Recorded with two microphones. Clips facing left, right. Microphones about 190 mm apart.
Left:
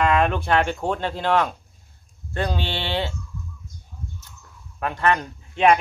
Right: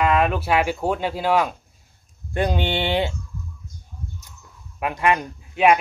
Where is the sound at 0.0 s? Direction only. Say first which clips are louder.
Even; 5° right (ahead or behind).